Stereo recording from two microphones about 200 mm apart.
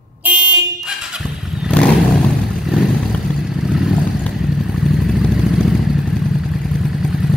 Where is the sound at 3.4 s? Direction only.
Centre (ahead or behind).